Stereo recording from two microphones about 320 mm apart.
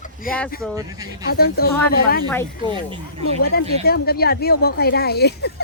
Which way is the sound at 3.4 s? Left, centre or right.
Left.